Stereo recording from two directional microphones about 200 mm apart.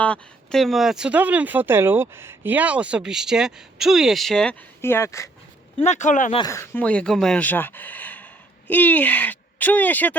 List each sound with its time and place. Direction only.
0.0 s speech: 5° left (ahead or behind)
5.8 s speech: 35° left (ahead or behind)
6.3 s speech: 15° left (ahead or behind)